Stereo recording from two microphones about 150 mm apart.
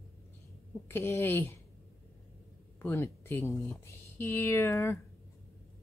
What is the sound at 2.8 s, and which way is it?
Speech, 15° left (ahead or behind).